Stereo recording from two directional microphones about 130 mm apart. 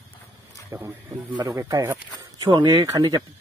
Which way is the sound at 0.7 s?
15° right (ahead or behind).